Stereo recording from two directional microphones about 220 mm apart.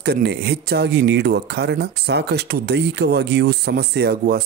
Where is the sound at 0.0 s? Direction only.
45° right (ahead or behind).